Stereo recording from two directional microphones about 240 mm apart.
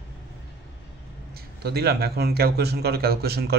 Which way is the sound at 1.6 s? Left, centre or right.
Right.